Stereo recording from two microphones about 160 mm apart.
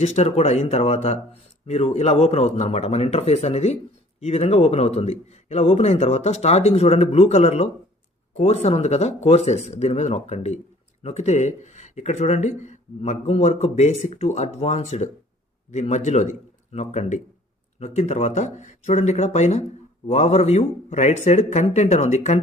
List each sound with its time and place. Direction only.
0.0 s a man's voice: 40° left (ahead or behind)